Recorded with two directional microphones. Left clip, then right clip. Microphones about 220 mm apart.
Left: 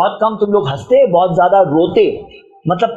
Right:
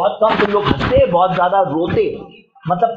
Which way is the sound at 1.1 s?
50° left (ahead or behind).